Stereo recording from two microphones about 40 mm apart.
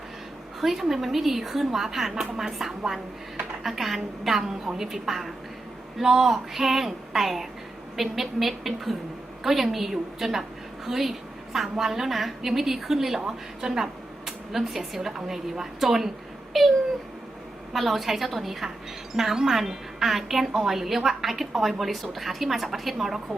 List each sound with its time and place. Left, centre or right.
0.6 s a woman's voice: centre
17.7 s a woman's voice: centre